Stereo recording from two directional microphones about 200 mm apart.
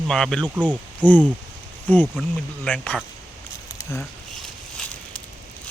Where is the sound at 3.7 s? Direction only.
15° left (ahead or behind).